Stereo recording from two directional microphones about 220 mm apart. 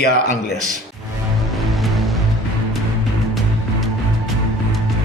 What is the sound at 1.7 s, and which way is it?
Music, centre (ahead or behind).